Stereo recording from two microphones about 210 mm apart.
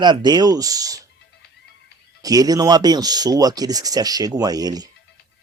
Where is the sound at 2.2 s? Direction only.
15° right (ahead or behind).